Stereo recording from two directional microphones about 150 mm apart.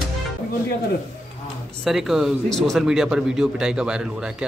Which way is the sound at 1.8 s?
Centre (ahead or behind).